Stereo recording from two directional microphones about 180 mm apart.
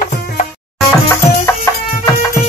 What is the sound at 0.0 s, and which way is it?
Music, 50° left (ahead or behind).